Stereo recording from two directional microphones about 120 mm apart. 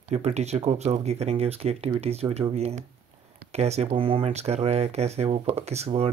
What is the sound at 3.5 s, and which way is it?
Speech, 65° right (ahead or behind).